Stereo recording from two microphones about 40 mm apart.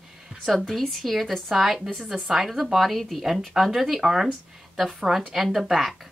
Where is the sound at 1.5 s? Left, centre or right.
Centre.